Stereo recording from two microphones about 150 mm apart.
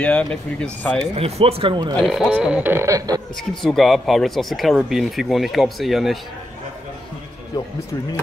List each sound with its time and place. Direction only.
0.0 s speech: 5° left (ahead or behind)
1.1 s speech: 40° right (ahead or behind)
2.0 s speech: centre (ahead or behind); by 3.2 s 20° right (ahead or behind)
3.3 s speech: centre (ahead or behind)
7.5 s speech: 25° left (ahead or behind)